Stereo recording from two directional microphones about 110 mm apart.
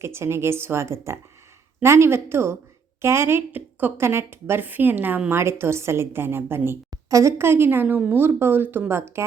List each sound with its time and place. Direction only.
0.0 s speech: 20° right (ahead or behind)